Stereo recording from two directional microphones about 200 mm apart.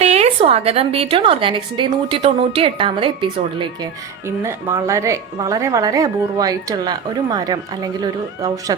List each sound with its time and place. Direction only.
0.0 s a woman's voice: 30° right (ahead or behind)
4.4 s a woman's voice: 15° right (ahead or behind)